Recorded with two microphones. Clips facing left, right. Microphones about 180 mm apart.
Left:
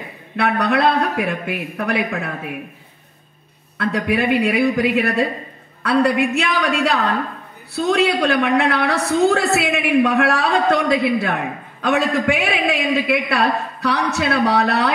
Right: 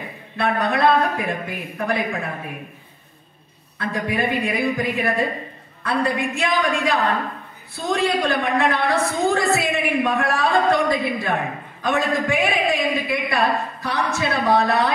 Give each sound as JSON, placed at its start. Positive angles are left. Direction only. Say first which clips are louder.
{"t": 0.4, "sound": "a woman's voice", "louder": "left 2 dB", "side_deg": 70}
{"t": 3.7, "sound": "a woman's voice", "louder": "left 5 dB", "side_deg": 70}